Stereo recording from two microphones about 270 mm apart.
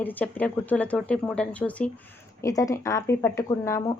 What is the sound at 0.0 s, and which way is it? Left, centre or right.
Speech, centre.